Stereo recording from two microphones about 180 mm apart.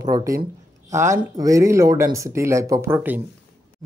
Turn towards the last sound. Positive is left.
turn(degrees=-10)  # may be behind; listen again after turning